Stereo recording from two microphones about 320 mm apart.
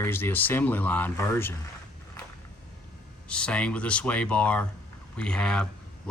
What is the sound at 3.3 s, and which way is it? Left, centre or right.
Speech, centre.